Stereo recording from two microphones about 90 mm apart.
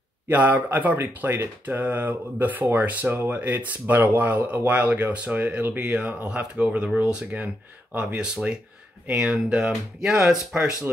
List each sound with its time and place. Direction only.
0.3 s speech: 20° right (ahead or behind)